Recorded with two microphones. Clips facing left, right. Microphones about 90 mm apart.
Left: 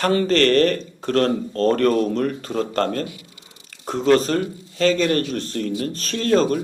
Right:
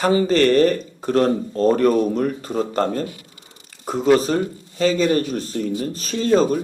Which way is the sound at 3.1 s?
40° right (ahead or behind).